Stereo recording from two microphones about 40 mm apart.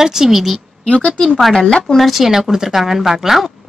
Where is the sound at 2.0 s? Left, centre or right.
Centre.